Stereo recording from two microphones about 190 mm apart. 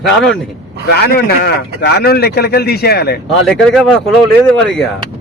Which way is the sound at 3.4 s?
5° left (ahead or behind).